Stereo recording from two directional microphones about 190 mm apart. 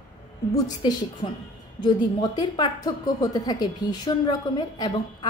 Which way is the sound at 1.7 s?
25° left (ahead or behind).